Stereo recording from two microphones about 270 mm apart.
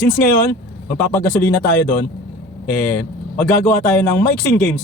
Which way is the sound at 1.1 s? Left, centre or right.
Centre.